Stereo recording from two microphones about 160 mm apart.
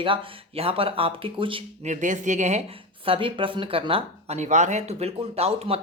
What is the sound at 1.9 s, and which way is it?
Speech, 50° right (ahead or behind).